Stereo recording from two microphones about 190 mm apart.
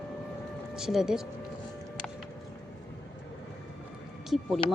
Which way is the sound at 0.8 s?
Centre (ahead or behind).